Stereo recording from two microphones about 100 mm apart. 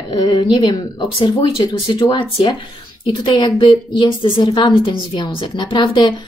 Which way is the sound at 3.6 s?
60° left (ahead or behind).